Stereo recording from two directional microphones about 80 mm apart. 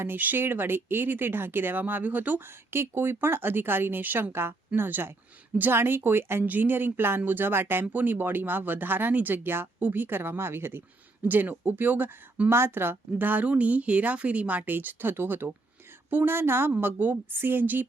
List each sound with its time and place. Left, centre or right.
0.0 s speech: right